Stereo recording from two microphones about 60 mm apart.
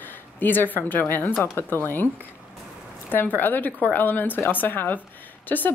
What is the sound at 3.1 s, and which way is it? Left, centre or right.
Speech, left.